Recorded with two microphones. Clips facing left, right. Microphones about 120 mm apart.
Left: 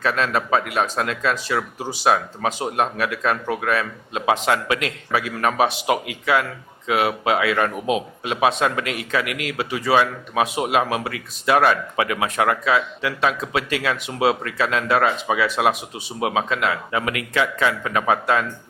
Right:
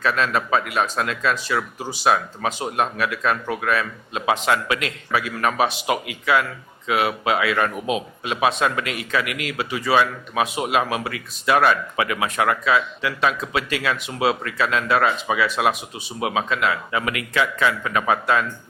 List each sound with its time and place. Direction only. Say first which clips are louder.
0.0 s speech: even; 50° left (ahead or behind)